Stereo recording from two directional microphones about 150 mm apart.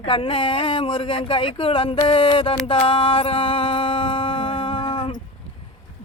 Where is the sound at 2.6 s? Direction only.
35° left (ahead or behind).